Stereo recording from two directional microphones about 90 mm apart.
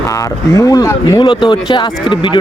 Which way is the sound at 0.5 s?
40° left (ahead or behind).